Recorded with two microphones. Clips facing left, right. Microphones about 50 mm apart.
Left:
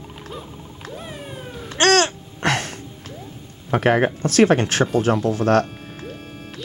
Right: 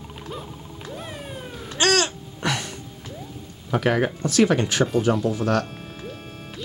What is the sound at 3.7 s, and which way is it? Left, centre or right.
Speech, left.